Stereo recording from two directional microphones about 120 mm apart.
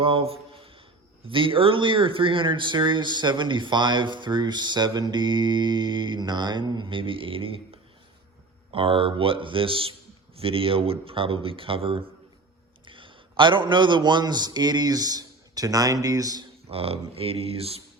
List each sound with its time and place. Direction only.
0.0 s speech: 50° right (ahead or behind)
8.7 s a man's voice: 50° right (ahead or behind); by 16.4 s 30° right (ahead or behind)
16.6 s speech: 55° right (ahead or behind)